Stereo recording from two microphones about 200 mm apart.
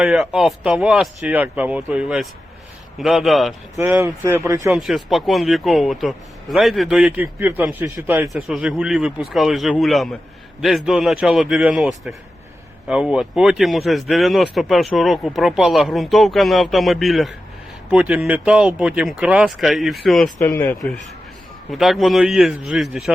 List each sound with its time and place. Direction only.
0.0 s a man's voice: 5° right (ahead or behind)
3.8 s speech: 10° right (ahead or behind)
4.8 s a man's voice: centre (ahead or behind)
20.4 s speech: 10° left (ahead or behind)
21.7 s a man's voice: centre (ahead or behind)